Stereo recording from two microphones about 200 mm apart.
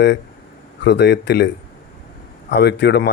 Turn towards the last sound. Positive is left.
turn(degrees=55)  # may be behind; listen again after turning